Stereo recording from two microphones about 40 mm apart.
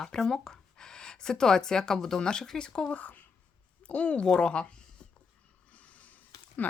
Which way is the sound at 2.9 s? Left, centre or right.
Left.